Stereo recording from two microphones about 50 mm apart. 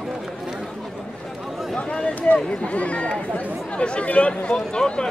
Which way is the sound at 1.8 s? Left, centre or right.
Left.